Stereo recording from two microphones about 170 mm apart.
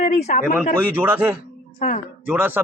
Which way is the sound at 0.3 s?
50° left (ahead or behind).